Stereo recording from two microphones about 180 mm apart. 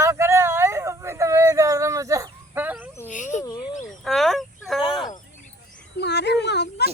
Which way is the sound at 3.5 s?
25° left (ahead or behind).